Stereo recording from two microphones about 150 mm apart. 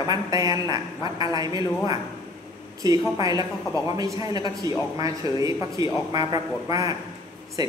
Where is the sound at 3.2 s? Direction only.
25° right (ahead or behind).